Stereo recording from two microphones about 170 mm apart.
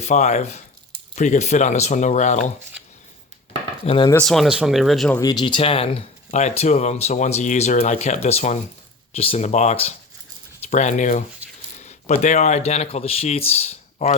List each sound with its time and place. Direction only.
0.0 s speech: 40° left (ahead or behind)
3.8 s speech: 30° left (ahead or behind)
4.1 s speech: 5° left (ahead or behind)
5.2 s speech: 25° left (ahead or behind)